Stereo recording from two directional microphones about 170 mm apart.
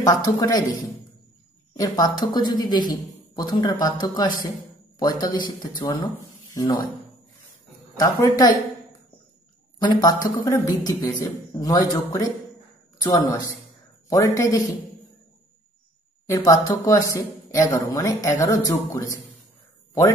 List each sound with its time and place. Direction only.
0.0 s speech: 20° left (ahead or behind)
1.7 s speech: 20° left (ahead or behind)
8.0 s speech: 20° left (ahead or behind)
9.8 s speech: 25° left (ahead or behind)
16.3 s speech: 20° left (ahead or behind)